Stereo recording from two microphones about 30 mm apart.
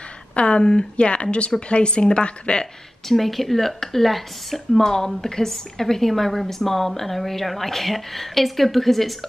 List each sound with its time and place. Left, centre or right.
0.4 s speech: left
3.1 s a woman's voice: centre